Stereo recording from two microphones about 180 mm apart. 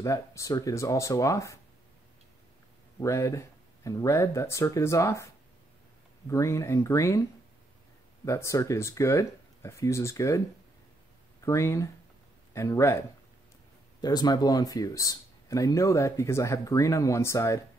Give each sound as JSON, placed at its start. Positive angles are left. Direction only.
{"t": 0.0, "sound": "speech", "side_deg": 15}
{"t": 3.0, "sound": "speech", "side_deg": 15}
{"t": 8.3, "sound": "speech", "side_deg": 15}
{"t": 11.4, "sound": "speech", "side_deg": 15}
{"t": 14.0, "sound": "speech", "side_deg": 20}